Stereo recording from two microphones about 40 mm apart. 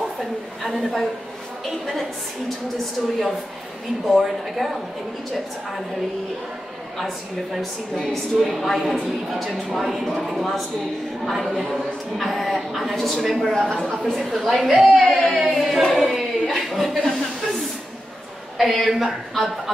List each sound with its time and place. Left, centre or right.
4.0 s speech: centre
8.0 s a woman's voice: centre
8.5 s speech: centre
13.7 s a woman's voice: centre
14.1 s speech: centre
15.3 s a sound: centre
18.7 s speech: centre